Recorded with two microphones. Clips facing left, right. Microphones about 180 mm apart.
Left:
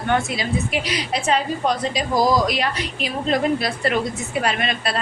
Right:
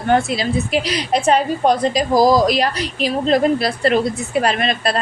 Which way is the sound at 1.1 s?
50° right (ahead or behind).